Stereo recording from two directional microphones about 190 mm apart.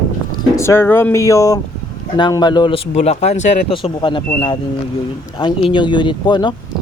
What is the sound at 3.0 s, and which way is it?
Speech, 35° left (ahead or behind).